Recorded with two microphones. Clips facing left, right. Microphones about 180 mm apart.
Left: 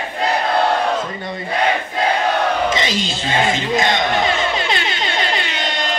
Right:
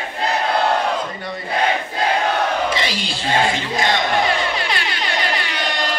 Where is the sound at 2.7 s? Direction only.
20° left (ahead or behind).